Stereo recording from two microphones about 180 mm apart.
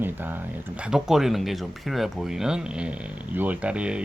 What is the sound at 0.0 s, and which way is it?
Speech, 10° right (ahead or behind).